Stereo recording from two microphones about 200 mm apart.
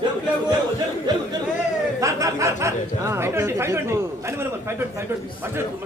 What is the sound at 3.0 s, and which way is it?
A man's voice, 15° right (ahead or behind).